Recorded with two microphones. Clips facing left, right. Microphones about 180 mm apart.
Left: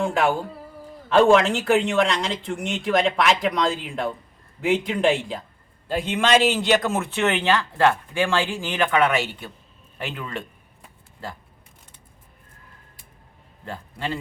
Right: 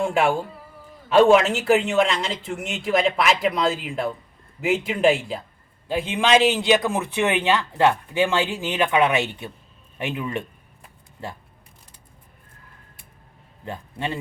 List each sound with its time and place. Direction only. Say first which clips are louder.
0.0 s speech: right 1 dB; 10° right (ahead or behind)
13.7 s a man's voice: right 1 dB; 25° right (ahead or behind)